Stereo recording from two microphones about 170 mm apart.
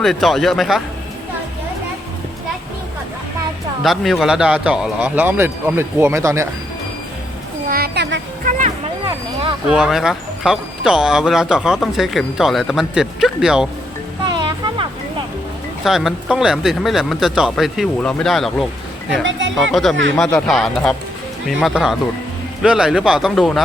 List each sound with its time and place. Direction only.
0.0 s speech: centre (ahead or behind)
3.8 s speech: centre (ahead or behind); by 6.5 s 15° right (ahead or behind)
7.7 s a sound: 70° right (ahead or behind)
8.4 s music: 50° right (ahead or behind)
9.6 s speech: 5° right (ahead or behind)
14.3 s music: 25° right (ahead or behind)
15.8 s speech: centre (ahead or behind)
19.2 s speech: 90° right
19.7 s speech: centre (ahead or behind)